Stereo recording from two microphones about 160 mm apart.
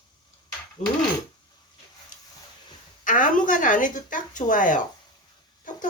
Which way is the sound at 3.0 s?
55° left (ahead or behind).